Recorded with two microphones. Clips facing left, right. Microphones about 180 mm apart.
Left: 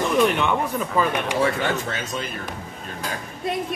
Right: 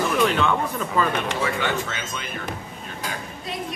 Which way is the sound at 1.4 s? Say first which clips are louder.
Left 3 dB; 40° left (ahead or behind).